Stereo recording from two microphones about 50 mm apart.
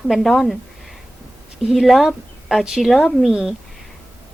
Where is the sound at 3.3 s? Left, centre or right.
Centre.